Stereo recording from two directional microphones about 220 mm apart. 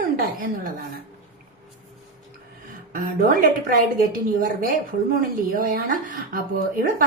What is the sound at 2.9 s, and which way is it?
Speech, 40° right (ahead or behind).